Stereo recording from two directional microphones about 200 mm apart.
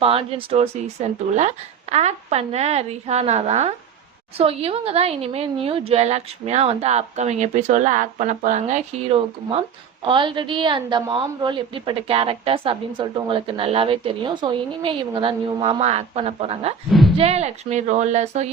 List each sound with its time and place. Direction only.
0.0 s a woman's voice: 30° right (ahead or behind)